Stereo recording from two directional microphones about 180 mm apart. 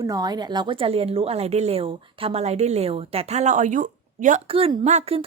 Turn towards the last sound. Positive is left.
turn(degrees=-35)  # may be behind; listen again after turning